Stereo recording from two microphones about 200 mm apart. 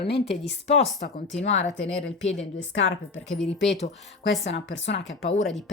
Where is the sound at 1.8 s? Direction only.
65° left (ahead or behind).